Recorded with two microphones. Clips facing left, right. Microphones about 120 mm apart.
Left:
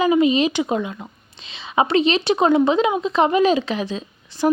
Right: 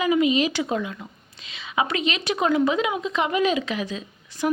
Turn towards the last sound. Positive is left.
turn(degrees=30)  # may be behind; listen again after turning